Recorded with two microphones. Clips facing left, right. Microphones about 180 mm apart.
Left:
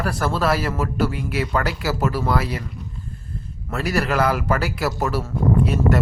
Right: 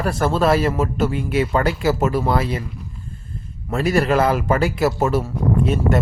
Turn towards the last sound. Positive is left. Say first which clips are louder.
# even
turn(degrees=-20)  # may be behind; listen again after turning